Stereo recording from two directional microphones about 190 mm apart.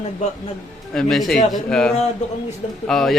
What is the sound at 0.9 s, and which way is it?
A man's voice, centre (ahead or behind).